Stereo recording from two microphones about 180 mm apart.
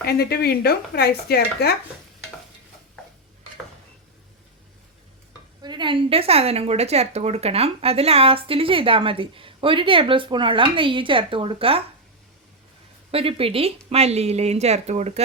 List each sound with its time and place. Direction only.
0.0 s a woman's voice: 60° left (ahead or behind)
5.6 s a woman's voice: 25° right (ahead or behind)
13.1 s speech: 30° right (ahead or behind)